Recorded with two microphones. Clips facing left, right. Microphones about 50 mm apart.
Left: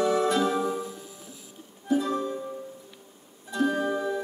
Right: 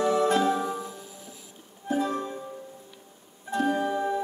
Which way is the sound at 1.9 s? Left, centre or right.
Right.